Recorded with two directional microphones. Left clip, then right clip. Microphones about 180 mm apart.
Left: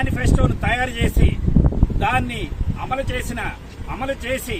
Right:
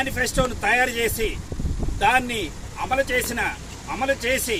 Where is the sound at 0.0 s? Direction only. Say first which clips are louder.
Even; centre (ahead or behind).